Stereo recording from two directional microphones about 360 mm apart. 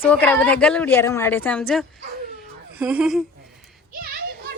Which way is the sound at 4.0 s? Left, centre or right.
Right.